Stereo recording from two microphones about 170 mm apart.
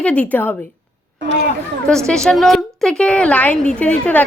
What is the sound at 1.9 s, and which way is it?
A woman's voice, 5° left (ahead or behind).